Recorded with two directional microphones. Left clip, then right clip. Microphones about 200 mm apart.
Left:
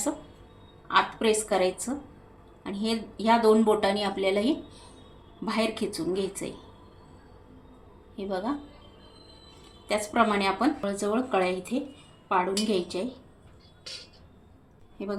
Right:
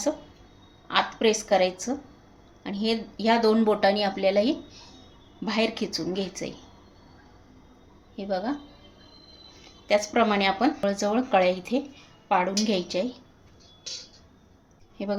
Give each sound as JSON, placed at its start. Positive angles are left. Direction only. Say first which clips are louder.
{"t": 0.9, "sound": "speech", "louder": "even", "side_deg": -20}
{"t": 8.1, "sound": "a woman's voice", "louder": "right 2 dB", "side_deg": -20}
{"t": 9.8, "sound": "speech", "louder": "right 3 dB", "side_deg": -20}
{"t": 10.8, "sound": "speech", "louder": "right 3 dB", "side_deg": -35}